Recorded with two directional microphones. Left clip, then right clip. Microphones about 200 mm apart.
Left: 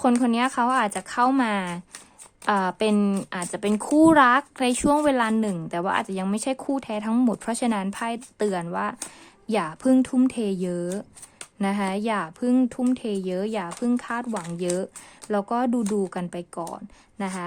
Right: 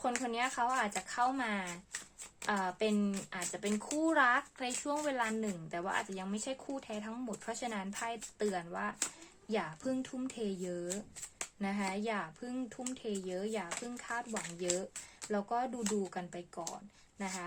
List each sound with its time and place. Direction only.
0.2 s a woman's voice: 55° left (ahead or behind)